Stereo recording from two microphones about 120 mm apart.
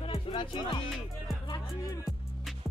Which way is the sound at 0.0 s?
50° left (ahead or behind).